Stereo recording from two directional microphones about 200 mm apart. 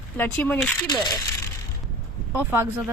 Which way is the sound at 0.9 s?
20° left (ahead or behind).